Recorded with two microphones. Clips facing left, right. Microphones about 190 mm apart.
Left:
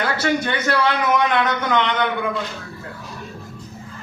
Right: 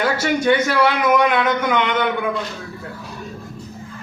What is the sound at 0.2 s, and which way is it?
A man's voice, 10° right (ahead or behind).